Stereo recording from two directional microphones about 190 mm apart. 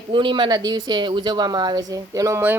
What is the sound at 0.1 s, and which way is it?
Speech, 25° right (ahead or behind).